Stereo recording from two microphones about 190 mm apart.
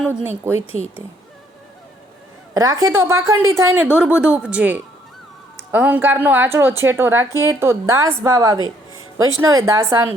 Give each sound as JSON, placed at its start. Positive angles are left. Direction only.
{"t": 0.2, "sound": "a woman's voice", "side_deg": -10}
{"t": 2.6, "sound": "a woman's voice", "side_deg": -15}
{"t": 8.5, "sound": "music", "side_deg": -90}
{"t": 9.1, "sound": "a woman's voice", "side_deg": -15}